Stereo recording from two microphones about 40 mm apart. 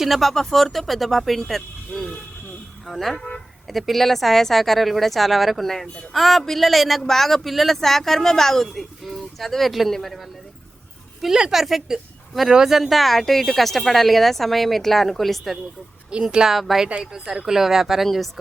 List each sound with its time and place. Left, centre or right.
0.0 s speech: centre
2.8 s speech: centre
11.2 s a woman's voice: centre
16.3 s a woman's voice: centre
16.6 s speech: centre
17.0 s a woman's voice: centre